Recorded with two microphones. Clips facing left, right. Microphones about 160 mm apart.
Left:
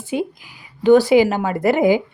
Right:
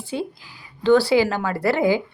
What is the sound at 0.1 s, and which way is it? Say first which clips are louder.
A woman's voice: left 5 dB; 15° left (ahead or behind).